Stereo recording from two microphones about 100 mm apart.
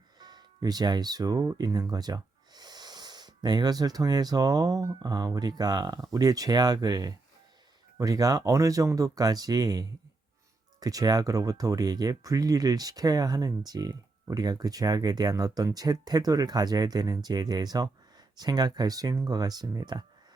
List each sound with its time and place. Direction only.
0.2 s speech: 45° right (ahead or behind)